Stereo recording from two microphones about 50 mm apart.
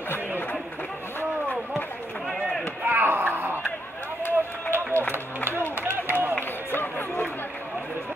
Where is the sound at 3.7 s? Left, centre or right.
Left.